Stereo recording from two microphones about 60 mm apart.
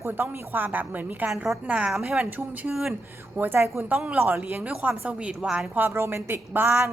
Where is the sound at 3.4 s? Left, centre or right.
Right.